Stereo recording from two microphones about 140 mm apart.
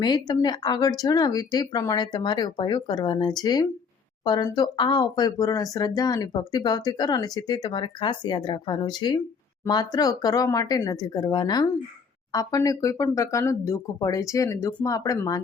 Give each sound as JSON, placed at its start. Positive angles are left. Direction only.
{"t": 0.0, "sound": "speech", "side_deg": 30}